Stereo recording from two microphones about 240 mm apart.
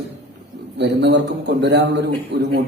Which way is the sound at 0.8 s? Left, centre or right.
Right.